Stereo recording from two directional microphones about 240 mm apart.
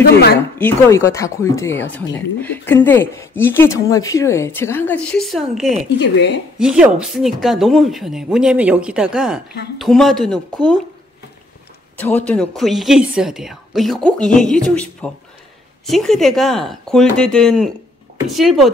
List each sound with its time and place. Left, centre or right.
0.6 s speech: centre
5.9 s speech: left
6.6 s a woman's voice: centre
12.0 s a woman's voice: centre